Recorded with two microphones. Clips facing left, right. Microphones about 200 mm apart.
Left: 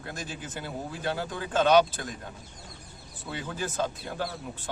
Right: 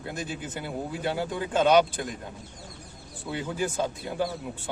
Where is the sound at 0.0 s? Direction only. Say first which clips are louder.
Right 4 dB; 15° right (ahead or behind).